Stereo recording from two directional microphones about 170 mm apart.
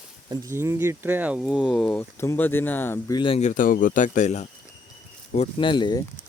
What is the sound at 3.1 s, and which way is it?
Speech, 30° left (ahead or behind).